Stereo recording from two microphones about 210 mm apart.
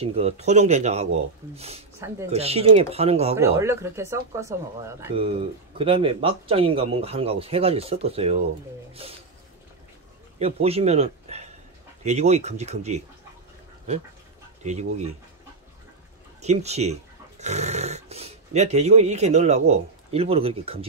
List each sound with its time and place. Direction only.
0.0 s speech: 30° right (ahead or behind)
2.0 s speech: 15° right (ahead or behind)
2.3 s speech: 30° right (ahead or behind)
3.3 s speech: 15° right (ahead or behind)
5.8 s speech: 25° right (ahead or behind)
10.4 s speech: 30° right (ahead or behind)
14.6 s speech: 35° right (ahead or behind)
16.3 s speech: 30° right (ahead or behind)